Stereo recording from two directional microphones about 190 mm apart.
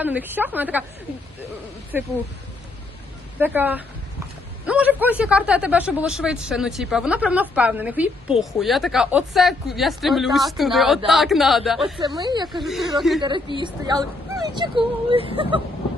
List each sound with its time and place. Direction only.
0.0 s a woman's voice: 10° right (ahead or behind)
3.3 s a woman's voice: 10° right (ahead or behind)
11.9 s speech: 20° right (ahead or behind)
12.5 s speech: centre (ahead or behind)
13.6 s speech: 25° right (ahead or behind)